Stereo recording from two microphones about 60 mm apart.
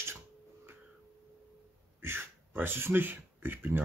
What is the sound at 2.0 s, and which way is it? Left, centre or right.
Speech, right.